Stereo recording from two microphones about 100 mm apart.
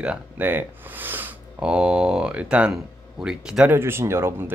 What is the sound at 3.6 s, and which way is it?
Speech, 25° right (ahead or behind).